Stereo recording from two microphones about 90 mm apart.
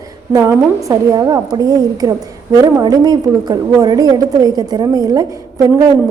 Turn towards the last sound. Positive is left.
turn(degrees=-45)  # may be behind; listen again after turning